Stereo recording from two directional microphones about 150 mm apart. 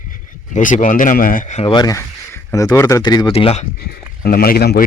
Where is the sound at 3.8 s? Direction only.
90° left.